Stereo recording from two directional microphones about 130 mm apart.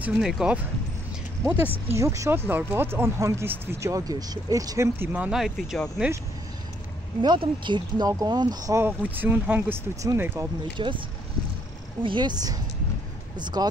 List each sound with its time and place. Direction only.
0.0 s speech: 5° right (ahead or behind)
7.2 s speech: 35° right (ahead or behind)
8.8 s speech: 15° right (ahead or behind)
10.8 s speech: 40° right (ahead or behind)
12.0 s speech: 40° right (ahead or behind)